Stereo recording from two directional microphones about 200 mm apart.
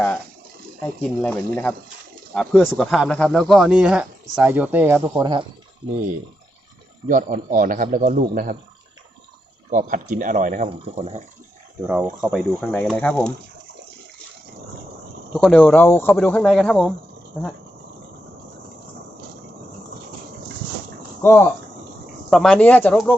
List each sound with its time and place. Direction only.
0.8 s speech: 5° left (ahead or behind); by 5.5 s 20° right (ahead or behind)
7.1 s a man's voice: 45° right (ahead or behind)
9.6 s speech: 40° right (ahead or behind)
10.7 s speech: 30° right (ahead or behind)
12.3 s speech: centre (ahead or behind)
15.3 s speech: centre (ahead or behind)
21.2 s speech: 10° left (ahead or behind)